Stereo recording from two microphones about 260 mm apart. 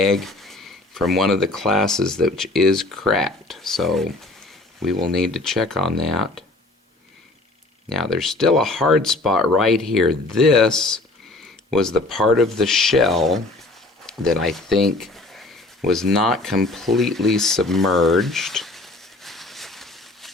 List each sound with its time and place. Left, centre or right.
0.1 s speech: centre
7.9 s speech: centre